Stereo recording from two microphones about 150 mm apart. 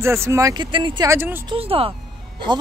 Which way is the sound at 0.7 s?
35° right (ahead or behind).